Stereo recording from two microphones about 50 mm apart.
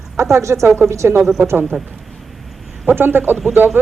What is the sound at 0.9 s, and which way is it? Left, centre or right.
Speech, right.